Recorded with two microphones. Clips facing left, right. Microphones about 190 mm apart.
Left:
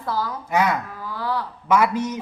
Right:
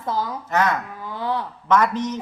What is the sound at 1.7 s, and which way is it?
Speech, 10° left (ahead or behind).